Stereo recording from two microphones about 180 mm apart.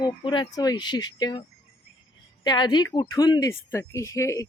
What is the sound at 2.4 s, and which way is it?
Speech, 25° left (ahead or behind).